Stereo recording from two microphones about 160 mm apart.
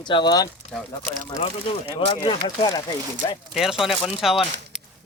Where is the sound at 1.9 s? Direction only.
30° left (ahead or behind).